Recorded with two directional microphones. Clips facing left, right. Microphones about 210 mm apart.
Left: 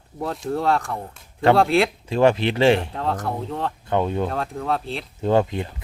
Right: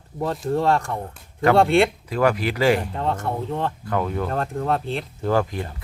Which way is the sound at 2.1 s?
25° left (ahead or behind).